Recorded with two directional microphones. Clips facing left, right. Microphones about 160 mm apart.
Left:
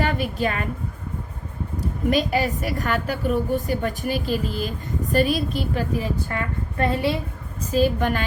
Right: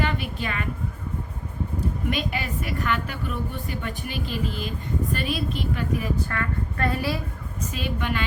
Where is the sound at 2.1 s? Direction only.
40° left (ahead or behind).